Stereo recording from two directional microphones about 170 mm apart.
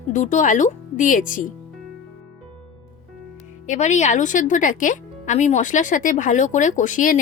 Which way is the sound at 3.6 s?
45° left (ahead or behind).